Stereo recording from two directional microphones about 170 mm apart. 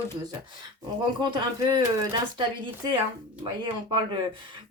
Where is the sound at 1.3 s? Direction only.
25° right (ahead or behind).